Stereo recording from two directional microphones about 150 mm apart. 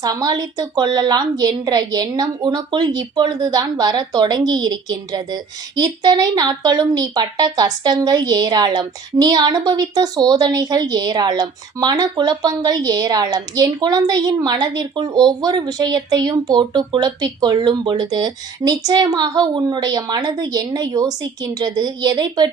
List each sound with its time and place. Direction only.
0.0 s a woman's voice: 25° right (ahead or behind)